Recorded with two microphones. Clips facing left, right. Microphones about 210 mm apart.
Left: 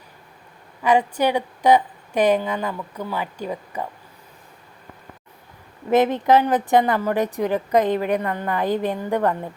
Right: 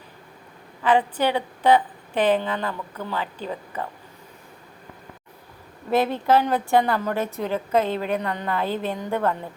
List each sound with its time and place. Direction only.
0.8 s a woman's voice: 10° left (ahead or behind)
5.9 s a woman's voice: 20° left (ahead or behind)